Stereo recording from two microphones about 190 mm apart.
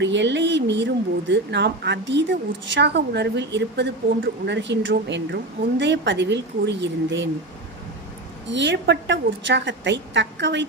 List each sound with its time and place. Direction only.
0.0 s speech: 70° right (ahead or behind)
8.5 s speech: 70° right (ahead or behind)